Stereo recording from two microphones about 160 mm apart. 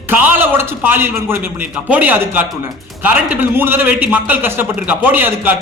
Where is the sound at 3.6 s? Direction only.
10° right (ahead or behind).